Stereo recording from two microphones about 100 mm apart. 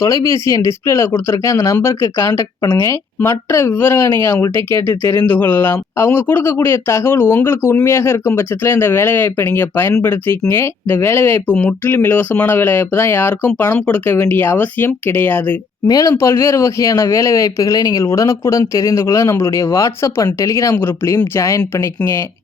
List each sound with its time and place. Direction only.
0.0 s speech: 30° left (ahead or behind)
15.9 s speech: 40° left (ahead or behind)